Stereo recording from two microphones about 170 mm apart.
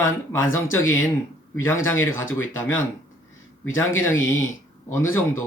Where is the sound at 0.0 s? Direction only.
15° left (ahead or behind).